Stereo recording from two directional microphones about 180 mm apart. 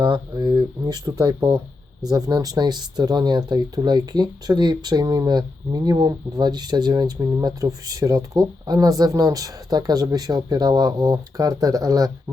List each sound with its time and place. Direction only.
0.0 s speech: 25° right (ahead or behind)